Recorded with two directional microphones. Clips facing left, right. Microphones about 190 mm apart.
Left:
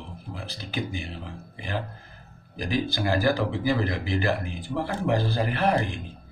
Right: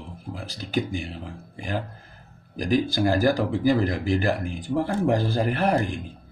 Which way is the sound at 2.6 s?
45° right (ahead or behind).